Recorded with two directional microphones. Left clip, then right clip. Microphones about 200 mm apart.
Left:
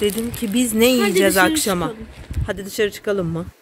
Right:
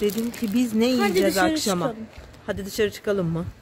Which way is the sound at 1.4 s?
10° left (ahead or behind).